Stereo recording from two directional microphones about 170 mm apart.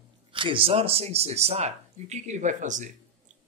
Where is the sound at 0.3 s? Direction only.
30° right (ahead or behind).